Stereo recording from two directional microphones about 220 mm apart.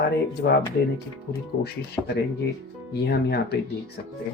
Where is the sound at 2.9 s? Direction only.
50° left (ahead or behind).